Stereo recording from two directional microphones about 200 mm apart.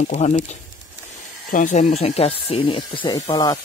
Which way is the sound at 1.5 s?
35° left (ahead or behind).